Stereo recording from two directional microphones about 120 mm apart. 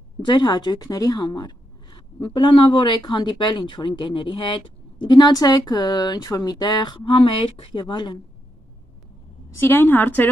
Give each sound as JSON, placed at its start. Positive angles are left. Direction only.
{"t": 0.2, "sound": "speech", "side_deg": 40}
{"t": 9.6, "sound": "a woman's voice", "side_deg": 20}